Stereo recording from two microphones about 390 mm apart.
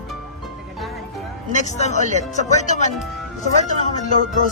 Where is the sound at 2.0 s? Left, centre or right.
Centre.